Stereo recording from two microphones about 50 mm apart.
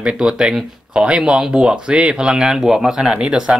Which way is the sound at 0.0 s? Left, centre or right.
Centre.